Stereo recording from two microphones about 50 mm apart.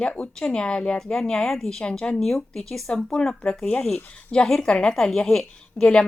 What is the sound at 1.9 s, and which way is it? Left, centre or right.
Speech, centre.